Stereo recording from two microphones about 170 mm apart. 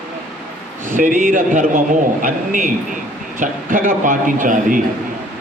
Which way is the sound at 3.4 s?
50° right (ahead or behind).